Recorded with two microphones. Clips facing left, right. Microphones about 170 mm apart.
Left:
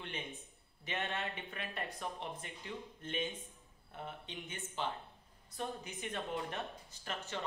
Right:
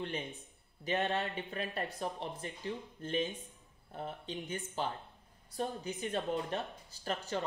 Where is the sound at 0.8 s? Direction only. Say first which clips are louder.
Right 6 dB; 35° right (ahead or behind).